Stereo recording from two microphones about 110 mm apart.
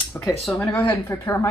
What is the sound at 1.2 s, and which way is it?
Speech, 30° left (ahead or behind).